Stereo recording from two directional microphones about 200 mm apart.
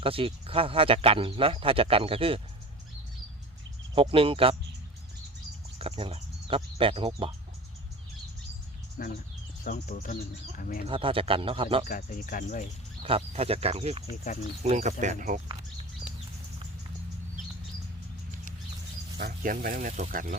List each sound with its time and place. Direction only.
0.0 s speech: 25° right (ahead or behind)
3.9 s speech: 25° right (ahead or behind)
5.8 s speech: 30° right (ahead or behind)
9.0 s speech: 40° left (ahead or behind)
10.8 s speech: 25° right (ahead or behind)
11.9 s speech: 40° left (ahead or behind)
13.0 s speech: 30° right (ahead or behind)
19.1 s speech: 50° right (ahead or behind)